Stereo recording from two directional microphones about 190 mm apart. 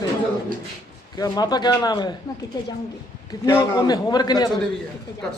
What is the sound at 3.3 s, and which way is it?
A man's voice, 15° left (ahead or behind).